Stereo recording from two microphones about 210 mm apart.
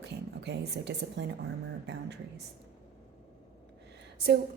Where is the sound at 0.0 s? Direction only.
55° right (ahead or behind).